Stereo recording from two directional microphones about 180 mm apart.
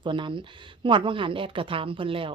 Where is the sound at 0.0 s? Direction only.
25° right (ahead or behind).